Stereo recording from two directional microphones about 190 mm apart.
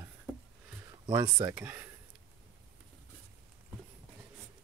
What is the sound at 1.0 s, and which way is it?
Speech, 20° right (ahead or behind).